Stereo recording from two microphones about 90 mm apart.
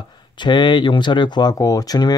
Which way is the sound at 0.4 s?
55° left (ahead or behind).